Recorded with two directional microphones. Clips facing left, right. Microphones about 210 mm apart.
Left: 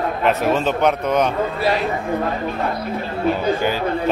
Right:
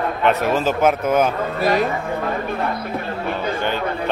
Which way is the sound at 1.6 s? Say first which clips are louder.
Right 4 dB; 45° right (ahead or behind).